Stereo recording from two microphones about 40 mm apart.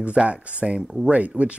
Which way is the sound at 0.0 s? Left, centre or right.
Right.